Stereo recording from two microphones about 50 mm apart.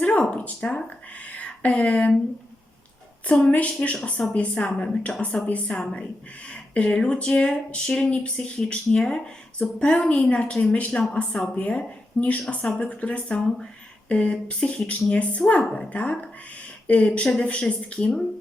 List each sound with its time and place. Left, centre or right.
0.0 s speech: left
3.5 s a woman's voice: left